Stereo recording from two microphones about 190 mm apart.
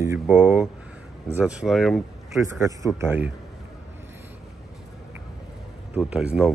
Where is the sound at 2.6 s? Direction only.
15° right (ahead or behind).